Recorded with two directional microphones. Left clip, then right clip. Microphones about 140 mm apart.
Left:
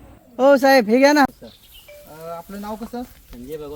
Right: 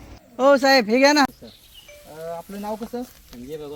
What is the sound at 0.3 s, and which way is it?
Speech, 50° left (ahead or behind).